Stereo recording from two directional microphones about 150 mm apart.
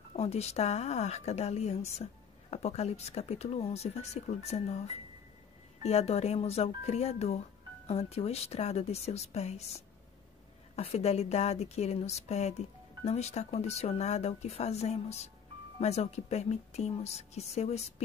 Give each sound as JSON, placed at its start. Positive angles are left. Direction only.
{"t": 0.1, "sound": "speech", "side_deg": 45}
{"t": 10.8, "sound": "speech", "side_deg": 45}